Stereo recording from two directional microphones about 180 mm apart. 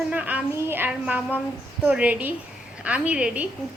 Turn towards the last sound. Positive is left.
turn(degrees=-5)  # may be behind; listen again after turning